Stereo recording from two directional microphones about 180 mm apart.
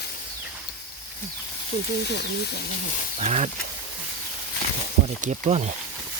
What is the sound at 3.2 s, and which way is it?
Speech, 40° right (ahead or behind).